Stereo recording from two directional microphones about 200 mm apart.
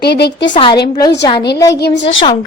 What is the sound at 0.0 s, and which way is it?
Speech, 55° left (ahead or behind).